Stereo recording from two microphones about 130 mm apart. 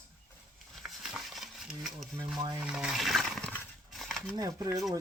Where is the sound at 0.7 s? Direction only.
Centre (ahead or behind).